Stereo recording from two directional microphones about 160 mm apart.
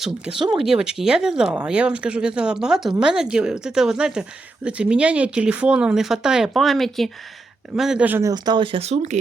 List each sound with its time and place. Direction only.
0.0 s speech: 5° right (ahead or behind)
8.3 s speech: 30° right (ahead or behind); by 9.1 s 45° right (ahead or behind)